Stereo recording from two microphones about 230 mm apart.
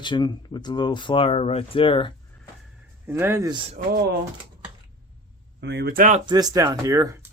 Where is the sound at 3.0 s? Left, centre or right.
Centre.